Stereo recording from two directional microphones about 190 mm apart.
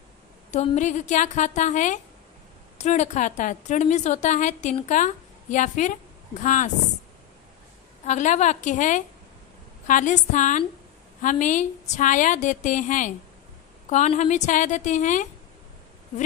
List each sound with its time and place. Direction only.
0.5 s a woman's voice: 40° left (ahead or behind)
8.0 s a woman's voice: 40° left (ahead or behind)